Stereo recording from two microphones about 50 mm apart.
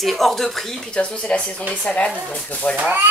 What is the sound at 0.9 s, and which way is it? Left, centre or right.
Speech, centre.